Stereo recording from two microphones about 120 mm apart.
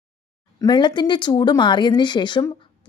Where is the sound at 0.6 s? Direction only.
40° left (ahead or behind).